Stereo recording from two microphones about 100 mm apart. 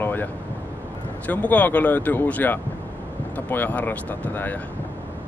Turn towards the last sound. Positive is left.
turn(degrees=15)  # may be behind; listen again after turning